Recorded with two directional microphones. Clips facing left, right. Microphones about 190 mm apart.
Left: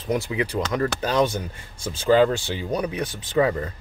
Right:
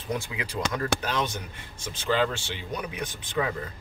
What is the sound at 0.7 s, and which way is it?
Speech, 40° left (ahead or behind).